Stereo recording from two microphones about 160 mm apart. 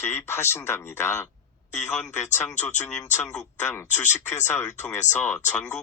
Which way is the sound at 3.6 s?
15° left (ahead or behind).